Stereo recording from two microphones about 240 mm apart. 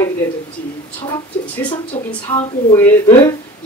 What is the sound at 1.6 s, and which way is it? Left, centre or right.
A woman's voice, left.